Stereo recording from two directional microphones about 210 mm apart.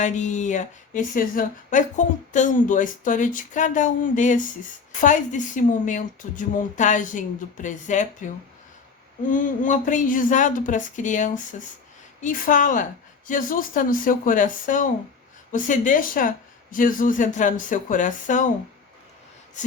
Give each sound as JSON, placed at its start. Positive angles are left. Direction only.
{"t": 0.0, "sound": "a woman's voice", "side_deg": 35}
{"t": 9.3, "sound": "a woman's voice", "side_deg": 40}